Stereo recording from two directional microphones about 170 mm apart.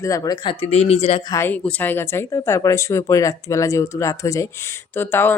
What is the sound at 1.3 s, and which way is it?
Speech, 15° left (ahead or behind).